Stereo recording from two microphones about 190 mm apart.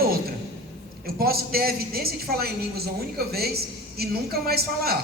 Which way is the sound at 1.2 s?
55° right (ahead or behind).